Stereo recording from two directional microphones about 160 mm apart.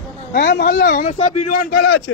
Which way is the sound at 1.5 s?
70° left (ahead or behind).